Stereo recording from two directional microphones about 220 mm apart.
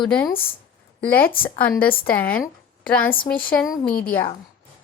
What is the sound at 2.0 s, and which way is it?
A woman's voice, 5° left (ahead or behind).